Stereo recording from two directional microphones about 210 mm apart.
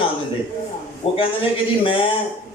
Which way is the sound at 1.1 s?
25° left (ahead or behind).